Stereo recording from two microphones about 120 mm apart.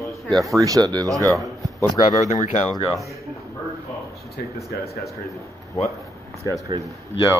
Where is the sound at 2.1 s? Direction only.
70° left (ahead or behind).